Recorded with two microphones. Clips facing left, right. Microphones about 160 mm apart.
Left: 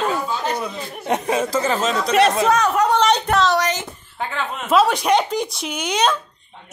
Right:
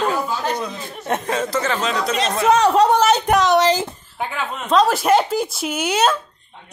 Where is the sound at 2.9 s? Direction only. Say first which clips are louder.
Right 2 dB; 10° right (ahead or behind).